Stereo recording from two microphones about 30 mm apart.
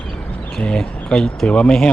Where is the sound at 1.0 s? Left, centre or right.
Left.